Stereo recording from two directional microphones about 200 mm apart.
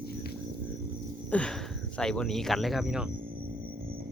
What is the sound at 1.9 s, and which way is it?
Speech, 5° left (ahead or behind).